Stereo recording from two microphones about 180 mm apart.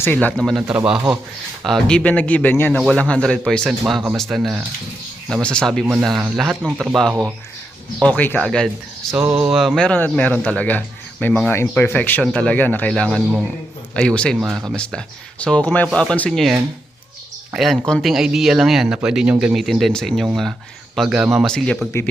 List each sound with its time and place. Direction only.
0.0 s a man's voice: 10° left (ahead or behind)
5.9 s speech: 10° right (ahead or behind)
8.0 s a man's voice: 10° left (ahead or behind)